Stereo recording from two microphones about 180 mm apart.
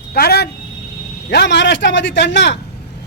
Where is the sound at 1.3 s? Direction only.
75° left (ahead or behind).